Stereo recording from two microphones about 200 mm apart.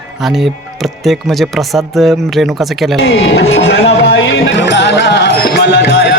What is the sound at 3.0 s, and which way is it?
Speech, 60° left (ahead or behind).